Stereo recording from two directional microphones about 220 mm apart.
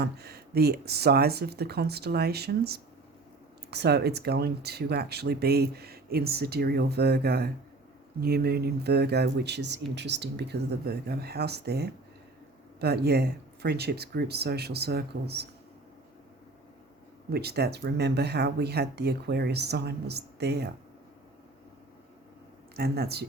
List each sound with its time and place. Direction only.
0.0 s speech: 45° right (ahead or behind)
17.2 s speech: 45° right (ahead or behind)
22.7 s speech: 45° right (ahead or behind)